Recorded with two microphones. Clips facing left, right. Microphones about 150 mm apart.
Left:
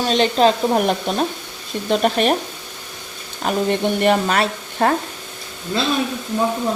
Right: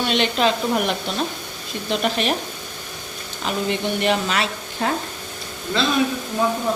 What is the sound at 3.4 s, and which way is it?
Speech, 50° left (ahead or behind).